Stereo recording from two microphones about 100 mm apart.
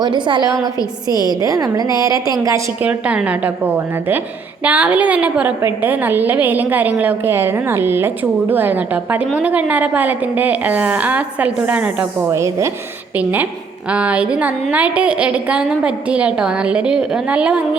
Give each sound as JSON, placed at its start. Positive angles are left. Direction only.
{"t": 0.0, "sound": "a woman's voice", "side_deg": -50}
{"t": 0.4, "sound": "a woman's voice", "side_deg": -35}
{"t": 1.1, "sound": "a woman's voice", "side_deg": 45}
{"t": 1.4, "sound": "a woman's voice", "side_deg": -40}
{"t": 2.8, "sound": "a woman's voice", "side_deg": -15}
{"t": 12.3, "sound": "a woman's voice", "side_deg": -30}
{"t": 13.1, "sound": "a woman's voice", "side_deg": -15}